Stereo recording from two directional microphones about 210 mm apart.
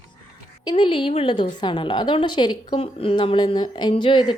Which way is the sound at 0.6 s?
20° left (ahead or behind).